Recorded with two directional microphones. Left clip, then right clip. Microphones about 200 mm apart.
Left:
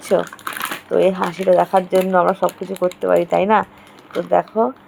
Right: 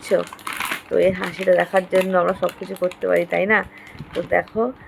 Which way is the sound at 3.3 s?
15° left (ahead or behind).